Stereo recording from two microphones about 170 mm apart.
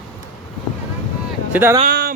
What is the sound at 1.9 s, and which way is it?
Music, 65° right (ahead or behind).